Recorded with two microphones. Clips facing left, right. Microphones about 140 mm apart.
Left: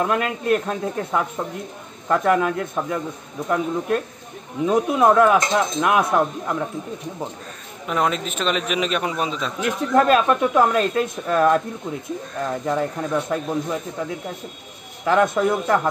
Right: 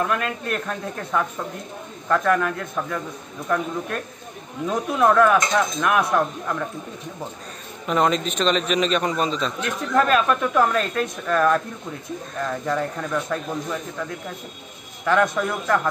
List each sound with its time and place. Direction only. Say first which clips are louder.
0.0 s speech: left 3 dB; 25° left (ahead or behind)
7.9 s a man's voice: right 2 dB; 5° left (ahead or behind)
9.9 s speech: left 2 dB; 25° left (ahead or behind)
15.0 s speech: left 3 dB; 20° left (ahead or behind)